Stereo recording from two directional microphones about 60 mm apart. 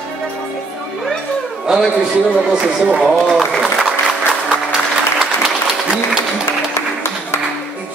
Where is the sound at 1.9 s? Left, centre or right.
Centre.